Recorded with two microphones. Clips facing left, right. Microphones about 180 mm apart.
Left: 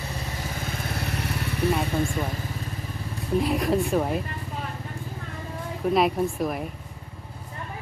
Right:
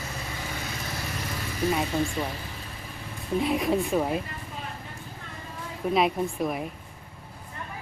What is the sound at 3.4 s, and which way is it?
Speech, centre (ahead or behind).